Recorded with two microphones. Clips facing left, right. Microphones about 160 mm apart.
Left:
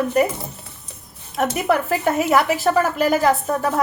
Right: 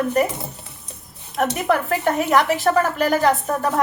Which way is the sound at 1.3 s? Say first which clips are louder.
Even; 5° left (ahead or behind).